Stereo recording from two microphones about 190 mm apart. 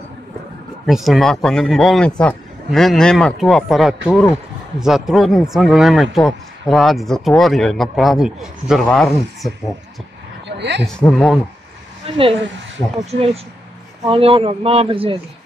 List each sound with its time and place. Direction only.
0.8 s speech: centre (ahead or behind)
10.6 s speech: 65° right (ahead or behind)
10.9 s speech: 5° left (ahead or behind)
12.1 s speech: 30° right (ahead or behind)